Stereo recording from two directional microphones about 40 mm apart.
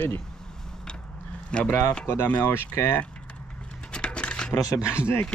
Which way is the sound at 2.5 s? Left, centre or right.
Left.